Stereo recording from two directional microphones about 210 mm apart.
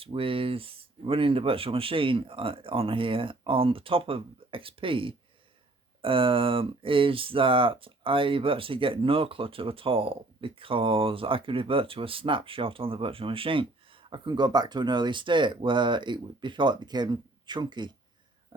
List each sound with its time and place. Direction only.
0.0 s speech: 25° right (ahead or behind)